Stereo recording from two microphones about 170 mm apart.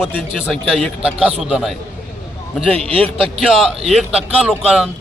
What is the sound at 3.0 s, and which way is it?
Speech, centre (ahead or behind).